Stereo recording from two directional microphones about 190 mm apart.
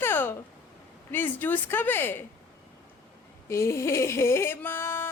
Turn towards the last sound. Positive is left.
turn(degrees=10)  # may be behind; listen again after turning